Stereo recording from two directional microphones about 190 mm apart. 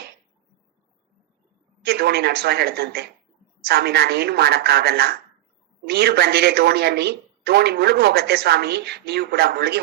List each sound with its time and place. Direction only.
1.8 s a woman's voice: 60° right (ahead or behind)